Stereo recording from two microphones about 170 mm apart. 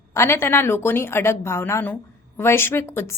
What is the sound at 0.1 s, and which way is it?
Speech, 15° left (ahead or behind).